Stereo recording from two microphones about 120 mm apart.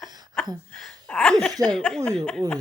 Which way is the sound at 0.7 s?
5° left (ahead or behind).